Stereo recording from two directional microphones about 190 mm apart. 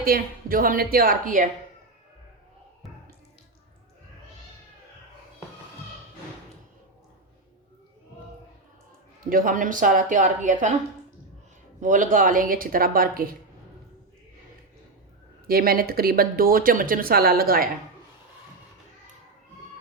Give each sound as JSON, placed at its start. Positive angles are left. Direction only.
{"t": 0.0, "sound": "speech", "side_deg": -50}
{"t": 9.3, "sound": "speech", "side_deg": -45}
{"t": 11.8, "sound": "speech", "side_deg": -40}
{"t": 15.4, "sound": "speech", "side_deg": -50}